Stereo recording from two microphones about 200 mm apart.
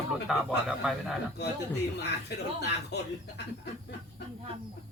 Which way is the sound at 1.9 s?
55° left (ahead or behind).